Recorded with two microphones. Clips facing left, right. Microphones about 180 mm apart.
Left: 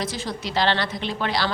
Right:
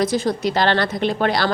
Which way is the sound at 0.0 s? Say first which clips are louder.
Right 10 dB; 45° right (ahead or behind).